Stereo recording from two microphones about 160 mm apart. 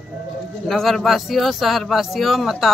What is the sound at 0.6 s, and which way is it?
A man's voice, centre (ahead or behind).